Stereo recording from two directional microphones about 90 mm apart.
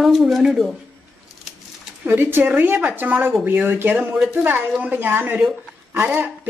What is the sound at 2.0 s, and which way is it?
A woman's voice, 20° right (ahead or behind).